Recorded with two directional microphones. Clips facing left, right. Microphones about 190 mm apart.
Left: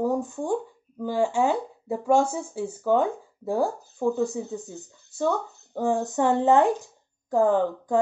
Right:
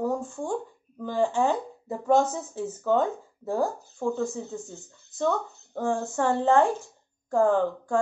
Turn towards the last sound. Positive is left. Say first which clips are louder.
# left 2 dB
turn(degrees=15)  # may be behind; listen again after turning